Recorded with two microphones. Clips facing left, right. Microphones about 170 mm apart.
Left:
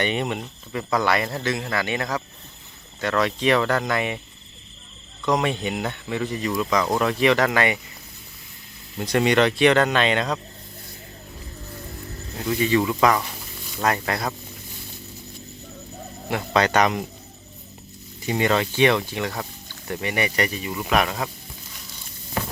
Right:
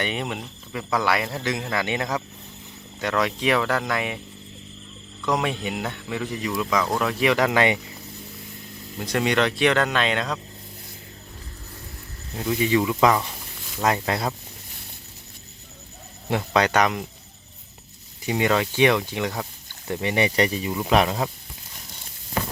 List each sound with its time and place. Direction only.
0.0 s speech: centre (ahead or behind)
5.2 s speech: 5° right (ahead or behind); by 7.8 s 20° right (ahead or behind)
9.0 s speech: centre (ahead or behind)
12.4 s speech: 15° right (ahead or behind)
16.5 s speech: 10° right (ahead or behind)
18.3 s speech: 10° right (ahead or behind)